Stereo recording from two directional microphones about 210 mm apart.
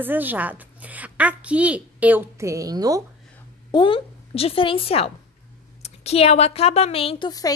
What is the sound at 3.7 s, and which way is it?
A woman's voice, 25° left (ahead or behind).